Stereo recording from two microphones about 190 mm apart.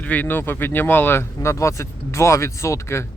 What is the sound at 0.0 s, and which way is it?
Speech, 10° left (ahead or behind).